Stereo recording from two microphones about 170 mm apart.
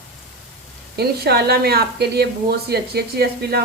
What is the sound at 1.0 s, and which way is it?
Speech, 70° right (ahead or behind).